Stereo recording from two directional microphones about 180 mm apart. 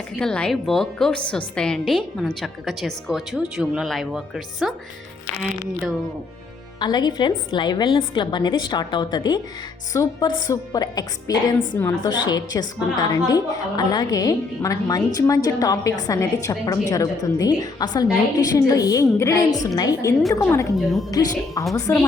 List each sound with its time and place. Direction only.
0.2 s a woman's voice: 5° left (ahead or behind)
6.7 s a woman's voice: 25° left (ahead or behind)
20.7 s a woman's voice: centre (ahead or behind)
21.1 s a woman's voice: 20° left (ahead or behind)